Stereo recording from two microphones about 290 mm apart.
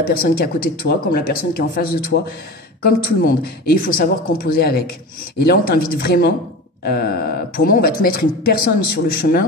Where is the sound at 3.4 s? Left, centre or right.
Left.